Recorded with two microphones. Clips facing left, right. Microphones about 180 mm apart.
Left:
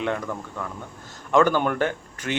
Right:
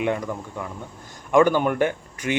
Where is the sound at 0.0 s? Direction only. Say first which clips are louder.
Right 2 dB; 10° right (ahead or behind).